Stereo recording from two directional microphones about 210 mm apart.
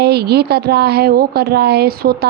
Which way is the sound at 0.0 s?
50° right (ahead or behind).